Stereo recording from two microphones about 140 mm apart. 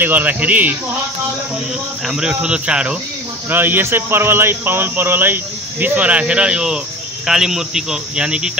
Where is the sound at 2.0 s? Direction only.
5° right (ahead or behind).